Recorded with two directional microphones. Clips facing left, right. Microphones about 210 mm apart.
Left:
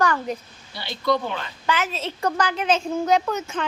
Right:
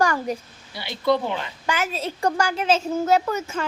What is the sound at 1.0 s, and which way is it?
A woman's voice, 25° right (ahead or behind).